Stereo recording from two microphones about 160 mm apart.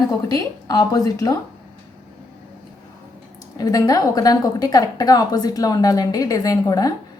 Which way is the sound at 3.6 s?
25° left (ahead or behind).